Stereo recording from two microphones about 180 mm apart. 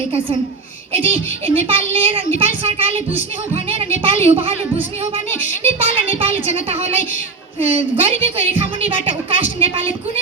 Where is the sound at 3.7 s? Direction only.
30° right (ahead or behind).